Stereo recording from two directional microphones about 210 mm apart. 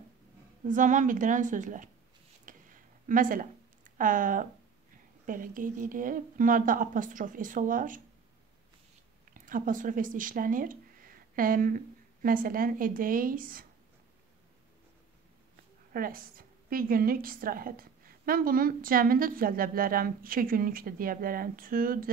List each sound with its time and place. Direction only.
0.7 s speech: 35° right (ahead or behind)
2.4 s a sound: 40° right (ahead or behind)
5.2 s speech: 40° right (ahead or behind)
9.3 s speech: 40° right (ahead or behind)
15.9 s a woman's voice: 45° right (ahead or behind)